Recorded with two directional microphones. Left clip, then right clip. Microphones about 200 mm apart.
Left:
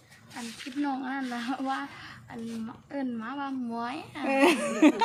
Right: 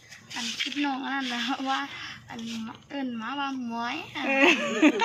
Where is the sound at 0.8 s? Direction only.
15° left (ahead or behind).